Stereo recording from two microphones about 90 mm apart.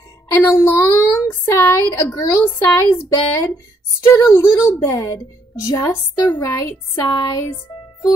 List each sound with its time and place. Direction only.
0.3 s a woman's voice: 30° left (ahead or behind)
4.8 s a woman's voice: 40° left (ahead or behind)
6.5 s speech: 35° left (ahead or behind)
7.1 s a woman's voice: 45° left (ahead or behind)